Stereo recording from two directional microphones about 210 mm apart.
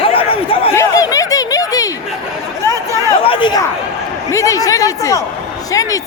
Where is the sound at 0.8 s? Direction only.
15° left (ahead or behind).